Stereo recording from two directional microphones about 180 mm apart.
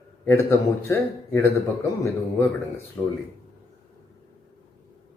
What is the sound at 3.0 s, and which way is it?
Speech, 15° left (ahead or behind).